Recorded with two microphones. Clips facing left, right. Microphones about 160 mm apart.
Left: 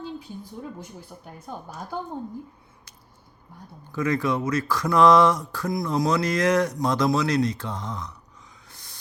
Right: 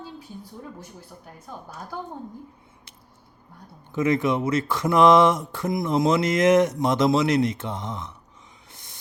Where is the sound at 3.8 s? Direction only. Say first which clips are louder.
Right 3 dB; 20° right (ahead or behind).